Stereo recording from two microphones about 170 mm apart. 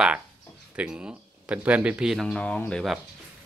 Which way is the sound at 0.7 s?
5° right (ahead or behind).